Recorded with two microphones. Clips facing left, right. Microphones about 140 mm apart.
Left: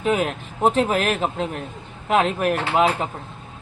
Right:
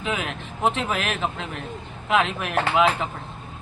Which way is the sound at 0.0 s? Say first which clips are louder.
Left 7 dB; 45° left (ahead or behind).